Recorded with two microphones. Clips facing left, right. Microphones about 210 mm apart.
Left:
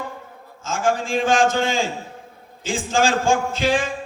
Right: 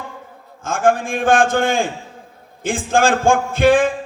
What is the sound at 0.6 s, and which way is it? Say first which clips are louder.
A man's voice: right 5 dB; 55° right (ahead or behind).